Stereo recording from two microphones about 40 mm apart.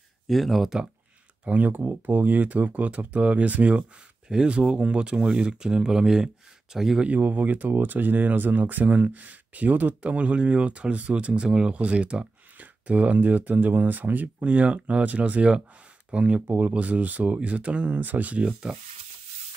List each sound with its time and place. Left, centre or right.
0.3 s speech: centre
1.4 s speech: right
1.7 s speech: right; by 7.0 s centre
7.2 s speech: right
10.0 s speech: right
16.5 s speech: right
18.6 s speech: right